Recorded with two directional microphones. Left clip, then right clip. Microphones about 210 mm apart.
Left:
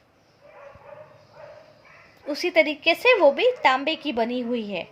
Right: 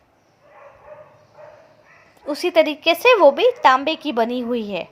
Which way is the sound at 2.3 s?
20° right (ahead or behind).